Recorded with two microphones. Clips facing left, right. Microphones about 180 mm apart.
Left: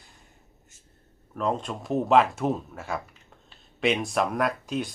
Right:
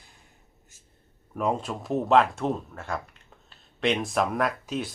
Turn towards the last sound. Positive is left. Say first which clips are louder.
# left 1 dB
turn(degrees=0)  # may be behind; listen again after turning